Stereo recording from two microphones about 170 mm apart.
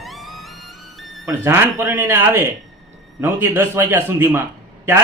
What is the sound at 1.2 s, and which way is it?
Speech, 15° right (ahead or behind).